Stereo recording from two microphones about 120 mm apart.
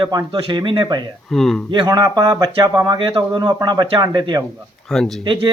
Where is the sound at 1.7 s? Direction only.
35° right (ahead or behind).